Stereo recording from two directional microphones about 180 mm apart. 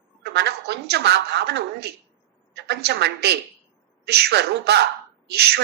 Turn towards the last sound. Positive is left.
turn(degrees=-65)  # may be behind; listen again after turning